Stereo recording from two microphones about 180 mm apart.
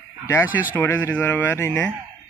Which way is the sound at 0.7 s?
10° left (ahead or behind).